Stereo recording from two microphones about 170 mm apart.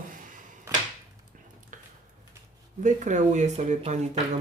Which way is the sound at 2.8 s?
45° right (ahead or behind).